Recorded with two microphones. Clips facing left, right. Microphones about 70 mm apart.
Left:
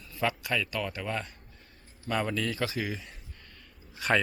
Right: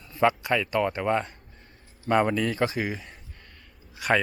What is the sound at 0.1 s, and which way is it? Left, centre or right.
A man's voice, right.